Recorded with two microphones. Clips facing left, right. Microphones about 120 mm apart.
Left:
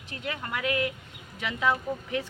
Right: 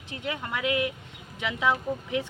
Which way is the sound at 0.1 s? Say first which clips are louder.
Right 2 dB; 20° right (ahead or behind).